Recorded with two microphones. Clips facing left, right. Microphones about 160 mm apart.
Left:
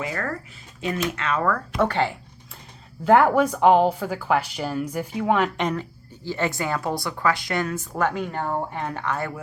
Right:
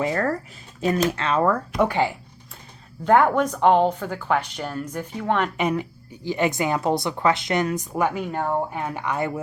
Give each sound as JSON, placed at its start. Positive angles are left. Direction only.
{"t": 0.0, "sound": "speech", "side_deg": -35}
{"t": 1.8, "sound": "speech", "side_deg": -10}
{"t": 3.0, "sound": "speech", "side_deg": 5}
{"t": 5.5, "sound": "speech", "side_deg": -10}